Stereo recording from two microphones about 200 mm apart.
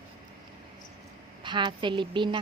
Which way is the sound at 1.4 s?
25° right (ahead or behind).